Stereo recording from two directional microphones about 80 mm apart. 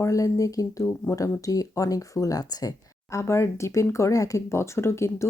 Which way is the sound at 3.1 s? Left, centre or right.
Left.